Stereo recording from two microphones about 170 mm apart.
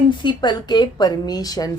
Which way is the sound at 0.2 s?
25° left (ahead or behind).